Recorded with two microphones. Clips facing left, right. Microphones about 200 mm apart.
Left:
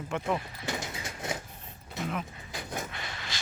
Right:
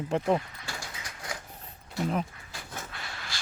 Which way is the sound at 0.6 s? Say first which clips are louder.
Left 6 dB; 20° left (ahead or behind).